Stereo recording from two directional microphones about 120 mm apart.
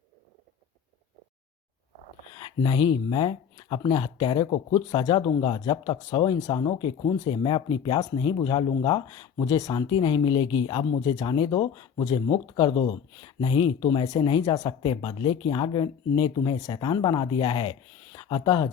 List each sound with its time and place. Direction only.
2.3 s speech: 40° left (ahead or behind)